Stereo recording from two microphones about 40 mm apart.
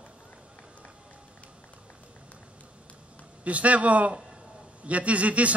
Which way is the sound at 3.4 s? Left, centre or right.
Right.